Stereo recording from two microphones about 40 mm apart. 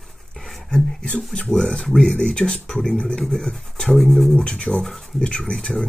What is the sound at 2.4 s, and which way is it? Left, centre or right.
Speech, centre.